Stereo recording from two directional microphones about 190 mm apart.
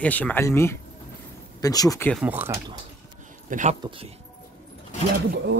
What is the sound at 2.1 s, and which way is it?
Speech, 10° right (ahead or behind).